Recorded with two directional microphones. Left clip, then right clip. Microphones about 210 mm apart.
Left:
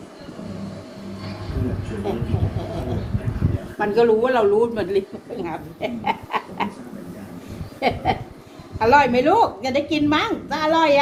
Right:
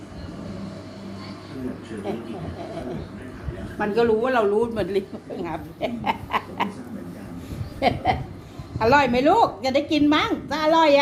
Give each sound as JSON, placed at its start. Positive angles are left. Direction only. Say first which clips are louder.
{"t": 3.8, "sound": "a woman's voice", "louder": "left 4 dB", "side_deg": -20}
{"t": 7.8, "sound": "a sound", "louder": "even", "side_deg": -40}
{"t": 8.8, "sound": "a woman's voice", "louder": "left 3 dB", "side_deg": -40}